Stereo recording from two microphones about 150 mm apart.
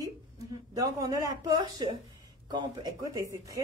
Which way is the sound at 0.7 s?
20° right (ahead or behind).